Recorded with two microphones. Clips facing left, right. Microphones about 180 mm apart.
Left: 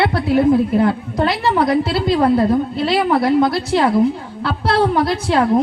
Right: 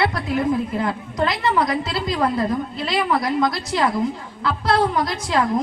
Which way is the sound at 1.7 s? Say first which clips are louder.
Left 7 dB; 60° left (ahead or behind).